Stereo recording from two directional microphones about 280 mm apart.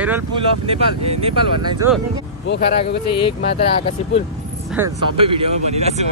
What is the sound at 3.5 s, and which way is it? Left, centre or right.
Speech, left.